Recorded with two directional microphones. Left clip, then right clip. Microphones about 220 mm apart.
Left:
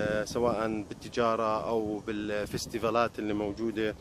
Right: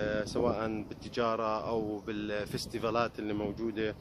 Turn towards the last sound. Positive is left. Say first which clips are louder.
# left 3 dB
turn(degrees=15)  # may be behind; listen again after turning